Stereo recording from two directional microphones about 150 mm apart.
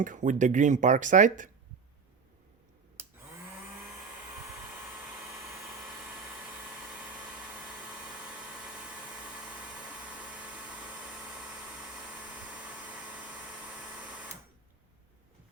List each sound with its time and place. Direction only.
0.0 s speech: 60° right (ahead or behind)
3.0 s vacuum cleaner: 15° right (ahead or behind)
7.9 s a sound: 5° right (ahead or behind)